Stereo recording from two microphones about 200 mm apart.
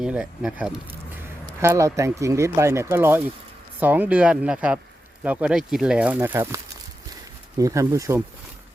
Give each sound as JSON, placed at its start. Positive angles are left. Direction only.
{"t": 0.0, "sound": "speech", "side_deg": -5}
{"t": 7.6, "sound": "speech", "side_deg": -15}